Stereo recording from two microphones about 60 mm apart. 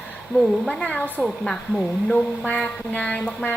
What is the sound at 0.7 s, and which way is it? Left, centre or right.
Speech, centre.